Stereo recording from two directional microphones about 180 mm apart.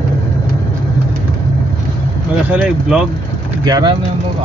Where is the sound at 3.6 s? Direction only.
25° right (ahead or behind).